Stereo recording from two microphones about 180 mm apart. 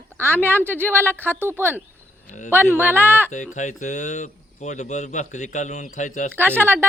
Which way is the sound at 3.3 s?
40° left (ahead or behind).